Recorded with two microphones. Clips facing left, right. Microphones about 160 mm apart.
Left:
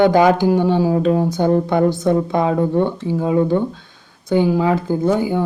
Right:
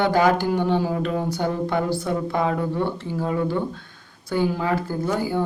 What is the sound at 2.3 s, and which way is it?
Speech, 20° left (ahead or behind).